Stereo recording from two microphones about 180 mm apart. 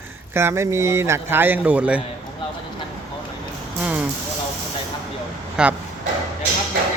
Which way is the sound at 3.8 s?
10° right (ahead or behind).